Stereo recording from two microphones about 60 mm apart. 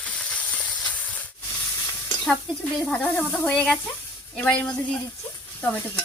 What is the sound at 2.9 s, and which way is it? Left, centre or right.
Speech, left.